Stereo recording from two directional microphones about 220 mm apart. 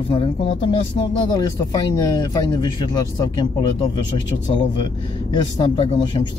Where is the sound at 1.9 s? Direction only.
15° left (ahead or behind).